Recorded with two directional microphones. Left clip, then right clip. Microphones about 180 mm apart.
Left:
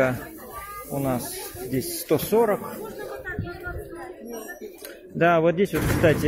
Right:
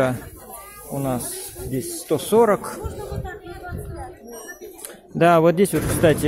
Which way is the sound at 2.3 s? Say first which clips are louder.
Right 7 dB; 40° right (ahead or behind).